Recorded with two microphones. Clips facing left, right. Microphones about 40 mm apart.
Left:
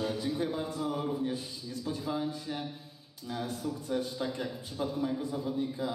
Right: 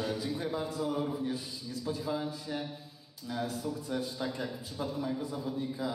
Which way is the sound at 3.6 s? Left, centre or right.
Centre.